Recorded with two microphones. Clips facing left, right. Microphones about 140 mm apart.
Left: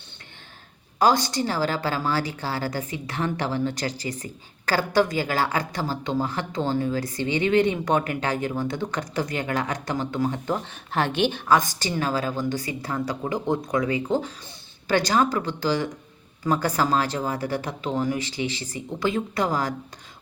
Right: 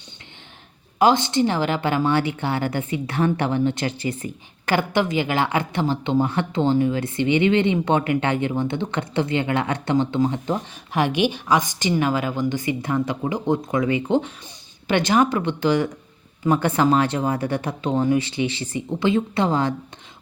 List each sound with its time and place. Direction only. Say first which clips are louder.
0.9 s a woman's voice: right 3 dB; 20° right (ahead or behind)